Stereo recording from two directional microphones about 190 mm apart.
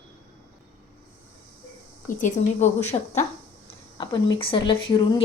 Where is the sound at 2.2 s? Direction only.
40° left (ahead or behind).